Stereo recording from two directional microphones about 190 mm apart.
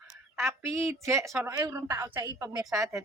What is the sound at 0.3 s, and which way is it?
A woman's voice, 15° right (ahead or behind).